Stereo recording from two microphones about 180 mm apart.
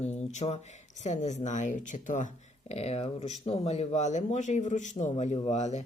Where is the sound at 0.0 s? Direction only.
40° left (ahead or behind).